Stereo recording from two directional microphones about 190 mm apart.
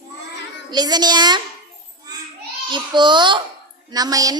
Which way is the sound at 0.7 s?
20° right (ahead or behind).